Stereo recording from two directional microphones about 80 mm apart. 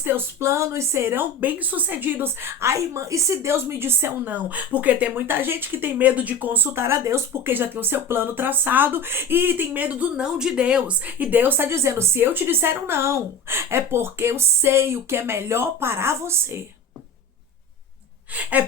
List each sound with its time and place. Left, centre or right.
0.0 s a woman's voice: right
4.4 s speech: centre
18.3 s gasp: centre